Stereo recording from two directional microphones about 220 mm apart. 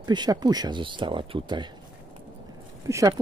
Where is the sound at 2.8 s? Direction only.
15° right (ahead or behind).